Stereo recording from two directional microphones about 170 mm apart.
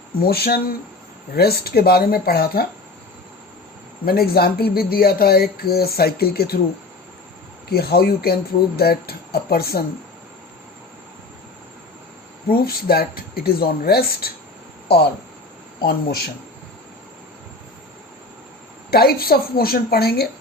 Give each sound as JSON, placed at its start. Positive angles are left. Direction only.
{"t": 0.2, "sound": "speech", "side_deg": 65}
{"t": 4.0, "sound": "speech", "side_deg": 65}
{"t": 7.7, "sound": "speech", "side_deg": 65}
{"t": 12.5, "sound": "speech", "side_deg": 65}
{"t": 15.8, "sound": "speech", "side_deg": 65}
{"t": 18.9, "sound": "speech", "side_deg": 65}